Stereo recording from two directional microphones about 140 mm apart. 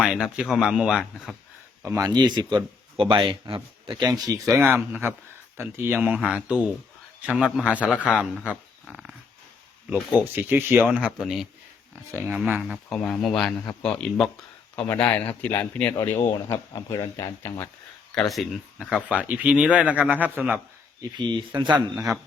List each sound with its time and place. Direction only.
0.0 s speech: 5° right (ahead or behind)
1.8 s speech: 20° right (ahead or behind); by 9.1 s 5° right (ahead or behind)
9.9 s speech: 15° right (ahead or behind)
12.1 s speech: 15° right (ahead or behind)
12.7 s a man's voice: 5° left (ahead or behind); by 17.7 s 20° left (ahead or behind)
18.1 s speech: centre (ahead or behind)
21.0 s speech: 30° right (ahead or behind)